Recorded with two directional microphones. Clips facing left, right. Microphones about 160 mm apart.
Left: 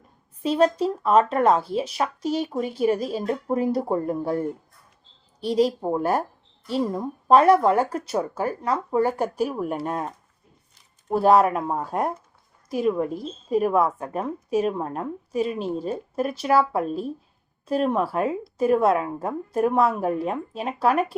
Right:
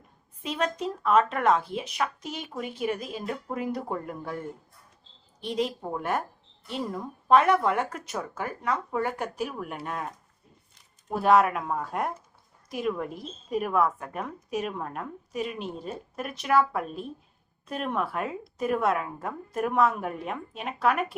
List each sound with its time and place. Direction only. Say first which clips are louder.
0.4 s a woman's voice: left 9 dB; 35° left (ahead or behind)
11.1 s a woman's voice: left 4 dB; 35° left (ahead or behind)